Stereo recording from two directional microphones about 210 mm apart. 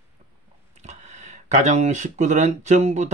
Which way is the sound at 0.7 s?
35° right (ahead or behind).